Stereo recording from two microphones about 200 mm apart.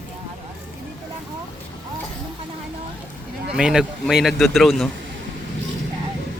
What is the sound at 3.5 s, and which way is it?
Speech, 5° right (ahead or behind).